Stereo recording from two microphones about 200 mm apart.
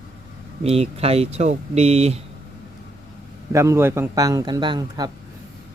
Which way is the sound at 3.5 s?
15° right (ahead or behind).